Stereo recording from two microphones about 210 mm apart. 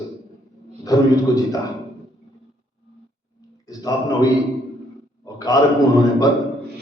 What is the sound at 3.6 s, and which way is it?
A man's voice, 15° left (ahead or behind).